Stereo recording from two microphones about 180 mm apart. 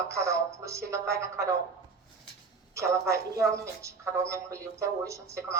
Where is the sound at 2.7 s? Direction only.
15° right (ahead or behind).